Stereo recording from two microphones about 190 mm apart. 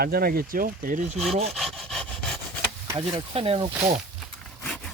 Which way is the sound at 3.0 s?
30° right (ahead or behind).